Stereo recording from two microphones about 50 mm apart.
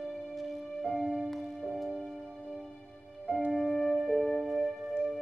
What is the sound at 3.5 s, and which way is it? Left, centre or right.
Music, centre.